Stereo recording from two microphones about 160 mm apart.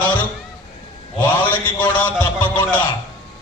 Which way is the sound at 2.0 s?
30° left (ahead or behind).